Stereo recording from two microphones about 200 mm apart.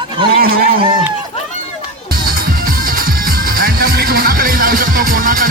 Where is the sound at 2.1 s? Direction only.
45° right (ahead or behind).